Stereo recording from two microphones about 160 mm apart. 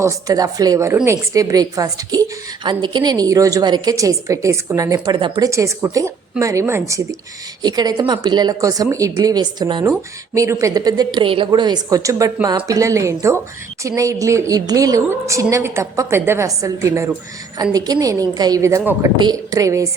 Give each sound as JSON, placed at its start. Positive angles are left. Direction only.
{"t": 0.0, "sound": "a woman's voice", "side_deg": -20}